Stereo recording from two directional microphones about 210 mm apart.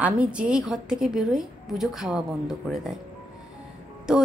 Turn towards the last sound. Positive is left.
turn(degrees=-5)  # may be behind; listen again after turning